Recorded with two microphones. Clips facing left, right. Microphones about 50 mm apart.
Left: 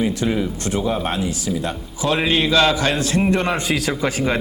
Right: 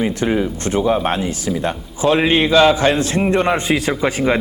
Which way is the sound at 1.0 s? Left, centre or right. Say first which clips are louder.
Right 3 dB; right.